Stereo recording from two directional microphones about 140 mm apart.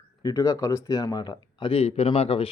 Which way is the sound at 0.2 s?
25° left (ahead or behind).